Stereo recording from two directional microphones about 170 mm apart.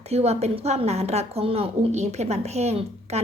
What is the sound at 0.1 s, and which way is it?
A woman's voice, 40° right (ahead or behind).